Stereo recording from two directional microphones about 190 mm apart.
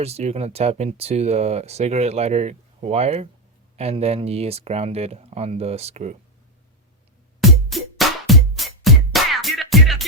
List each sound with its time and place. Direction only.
0.0 s speech: 35° right (ahead or behind)
7.7 s music: centre (ahead or behind)